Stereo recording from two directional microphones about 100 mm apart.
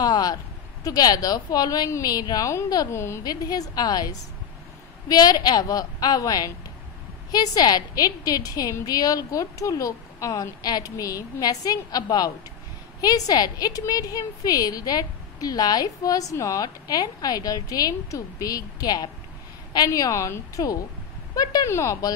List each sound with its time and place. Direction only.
0.0 s a sound: 40° left (ahead or behind)
0.8 s a woman's voice: 40° left (ahead or behind)
3.3 s a woman's voice: 40° left (ahead or behind)